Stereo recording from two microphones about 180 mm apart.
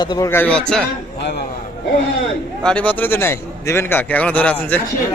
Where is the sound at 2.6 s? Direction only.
10° left (ahead or behind).